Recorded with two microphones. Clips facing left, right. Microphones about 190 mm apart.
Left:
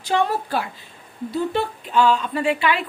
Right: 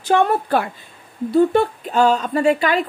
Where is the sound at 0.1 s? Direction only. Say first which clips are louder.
Right 5 dB; 55° right (ahead or behind).